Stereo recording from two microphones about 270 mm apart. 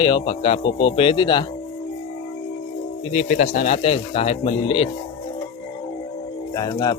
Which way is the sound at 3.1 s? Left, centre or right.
Left.